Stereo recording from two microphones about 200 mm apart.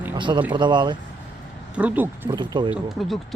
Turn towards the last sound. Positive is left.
turn(degrees=0)  # may be behind; listen again after turning